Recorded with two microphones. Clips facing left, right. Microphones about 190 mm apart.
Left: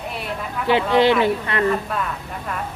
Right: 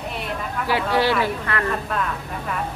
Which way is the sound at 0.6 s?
20° left (ahead or behind).